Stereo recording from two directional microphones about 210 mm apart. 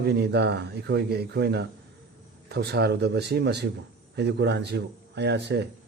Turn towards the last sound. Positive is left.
turn(degrees=-55)  # may be behind; listen again after turning